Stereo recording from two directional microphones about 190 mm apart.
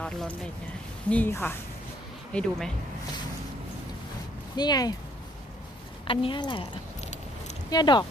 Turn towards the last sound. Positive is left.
turn(degrees=20)  # may be behind; listen again after turning